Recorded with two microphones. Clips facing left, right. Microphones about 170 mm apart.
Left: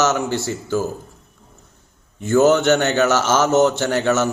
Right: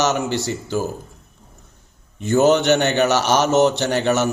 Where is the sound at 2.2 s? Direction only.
20° right (ahead or behind).